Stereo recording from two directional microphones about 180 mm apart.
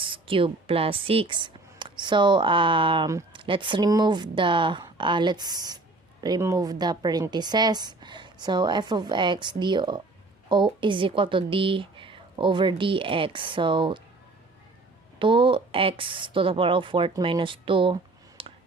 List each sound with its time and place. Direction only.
0.0 s a woman's voice: 30° right (ahead or behind)
15.2 s a woman's voice: 30° right (ahead or behind)
18.4 s a sound: 30° right (ahead or behind)